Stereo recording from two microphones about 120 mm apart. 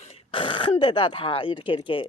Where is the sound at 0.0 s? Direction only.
55° left (ahead or behind).